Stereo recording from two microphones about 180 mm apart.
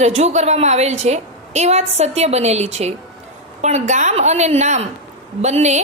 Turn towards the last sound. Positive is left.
turn(degrees=-40)  # may be behind; listen again after turning